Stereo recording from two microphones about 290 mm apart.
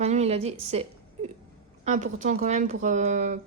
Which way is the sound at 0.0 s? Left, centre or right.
Right.